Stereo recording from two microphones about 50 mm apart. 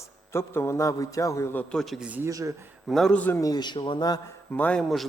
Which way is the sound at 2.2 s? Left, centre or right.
Right.